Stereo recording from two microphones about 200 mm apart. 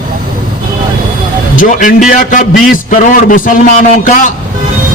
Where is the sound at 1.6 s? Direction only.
40° left (ahead or behind).